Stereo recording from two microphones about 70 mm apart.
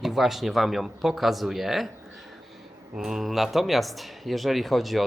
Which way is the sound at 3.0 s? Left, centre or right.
Centre.